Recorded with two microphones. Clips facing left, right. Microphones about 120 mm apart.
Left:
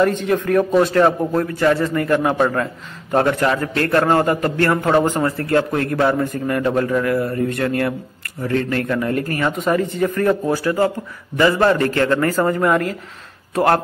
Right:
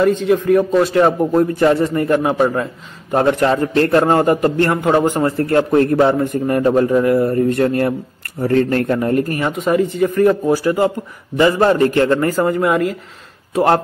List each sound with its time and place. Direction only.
0.0 s a man's voice: 5° right (ahead or behind)
1.3 s a man's voice: 20° right (ahead or behind)
2.1 s a man's voice: 15° right (ahead or behind)
3.3 s a man's voice: 25° right (ahead or behind)
4.8 s a man's voice: 15° right (ahead or behind)
5.2 s a man's voice: 25° right (ahead or behind)
9.6 s a man's voice: 5° right (ahead or behind)